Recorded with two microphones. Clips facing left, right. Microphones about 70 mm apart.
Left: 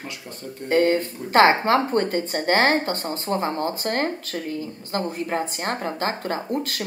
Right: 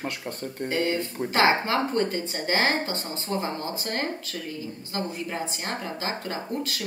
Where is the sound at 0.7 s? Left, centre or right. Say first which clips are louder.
Left 8 dB; left.